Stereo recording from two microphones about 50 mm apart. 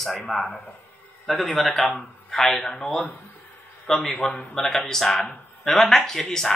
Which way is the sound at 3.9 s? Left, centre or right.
Centre.